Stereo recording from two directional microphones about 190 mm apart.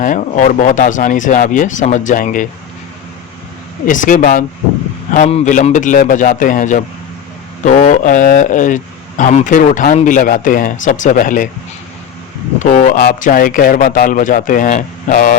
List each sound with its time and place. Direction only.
0.0 s speech: 40° left (ahead or behind)
3.8 s speech: 45° left (ahead or behind)
12.5 s speech: 40° left (ahead or behind)